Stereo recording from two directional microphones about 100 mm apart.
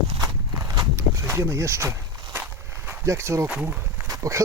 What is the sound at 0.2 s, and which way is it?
Walk, 35° right (ahead or behind).